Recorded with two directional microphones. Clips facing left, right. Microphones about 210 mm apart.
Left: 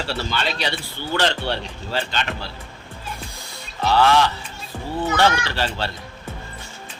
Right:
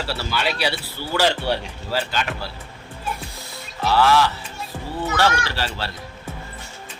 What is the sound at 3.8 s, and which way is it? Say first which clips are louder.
Speech: even; 5° right (ahead or behind).